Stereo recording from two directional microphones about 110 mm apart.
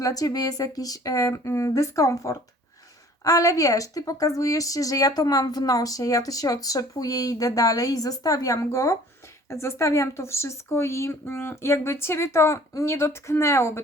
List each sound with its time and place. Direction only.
0.0 s a woman's voice: 35° left (ahead or behind)